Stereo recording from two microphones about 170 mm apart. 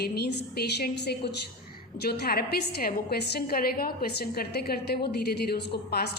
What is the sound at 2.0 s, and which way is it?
A woman's voice, 65° left (ahead or behind).